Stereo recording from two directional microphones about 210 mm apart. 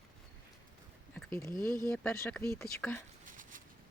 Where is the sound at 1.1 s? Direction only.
10° left (ahead or behind).